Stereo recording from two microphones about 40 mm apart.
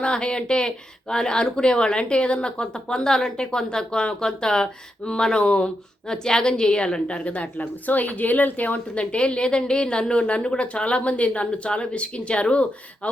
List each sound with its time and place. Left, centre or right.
0.0 s speech: left
7.6 s a woman's voice: left
9.1 s speech: left